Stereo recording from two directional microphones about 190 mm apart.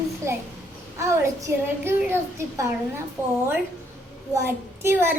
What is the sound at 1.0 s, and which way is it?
A woman's voice, 15° right (ahead or behind).